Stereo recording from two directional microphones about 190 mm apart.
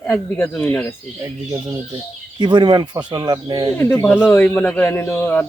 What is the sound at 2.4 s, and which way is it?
Speech, 25° right (ahead or behind).